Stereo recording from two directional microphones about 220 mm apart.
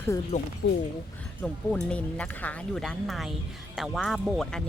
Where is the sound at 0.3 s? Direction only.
30° left (ahead or behind).